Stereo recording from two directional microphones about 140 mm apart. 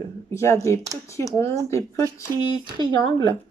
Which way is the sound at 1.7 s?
20° left (ahead or behind).